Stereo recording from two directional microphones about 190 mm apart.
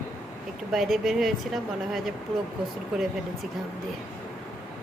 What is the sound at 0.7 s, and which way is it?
Speech, centre (ahead or behind).